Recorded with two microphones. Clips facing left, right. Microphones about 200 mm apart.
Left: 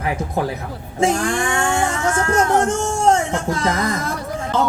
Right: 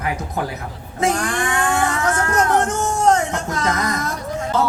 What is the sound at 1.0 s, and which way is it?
Speech, 30° left (ahead or behind).